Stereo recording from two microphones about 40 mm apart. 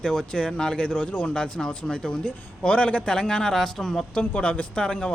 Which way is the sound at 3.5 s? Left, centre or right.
Centre.